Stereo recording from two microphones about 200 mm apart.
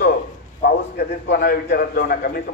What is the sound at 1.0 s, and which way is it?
A man's voice, 50° left (ahead or behind).